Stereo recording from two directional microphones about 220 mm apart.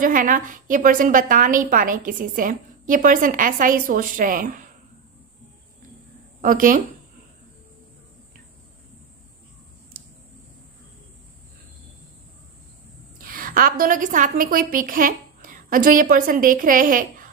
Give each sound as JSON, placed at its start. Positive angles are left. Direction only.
{"t": 0.0, "sound": "a woman's voice", "side_deg": -40}
{"t": 6.4, "sound": "a woman's voice", "side_deg": -40}
{"t": 13.2, "sound": "a woman's voice", "side_deg": -40}